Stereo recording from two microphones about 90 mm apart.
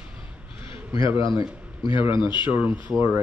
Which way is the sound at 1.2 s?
65° left (ahead or behind).